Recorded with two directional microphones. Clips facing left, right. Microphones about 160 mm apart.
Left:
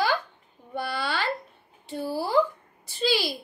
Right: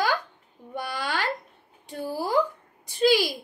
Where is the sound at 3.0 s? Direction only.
15° right (ahead or behind).